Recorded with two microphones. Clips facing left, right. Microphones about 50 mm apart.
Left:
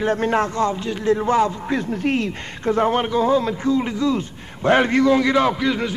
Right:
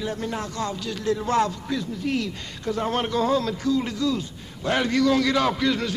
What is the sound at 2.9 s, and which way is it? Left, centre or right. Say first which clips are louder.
A man's voice: left 4 dB; centre.